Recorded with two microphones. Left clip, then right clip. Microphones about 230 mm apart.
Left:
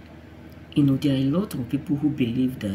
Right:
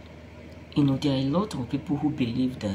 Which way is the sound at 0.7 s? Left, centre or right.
Left.